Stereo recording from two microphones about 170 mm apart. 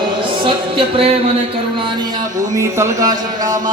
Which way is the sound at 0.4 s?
35° right (ahead or behind).